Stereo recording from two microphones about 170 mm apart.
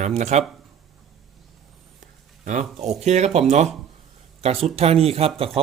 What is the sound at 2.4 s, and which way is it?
Speech, 45° right (ahead or behind).